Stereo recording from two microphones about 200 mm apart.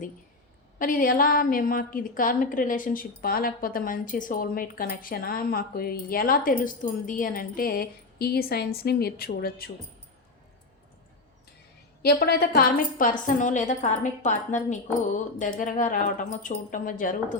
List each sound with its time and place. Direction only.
0.8 s a woman's voice: 45° left (ahead or behind)
12.0 s a woman's voice: 50° left (ahead or behind)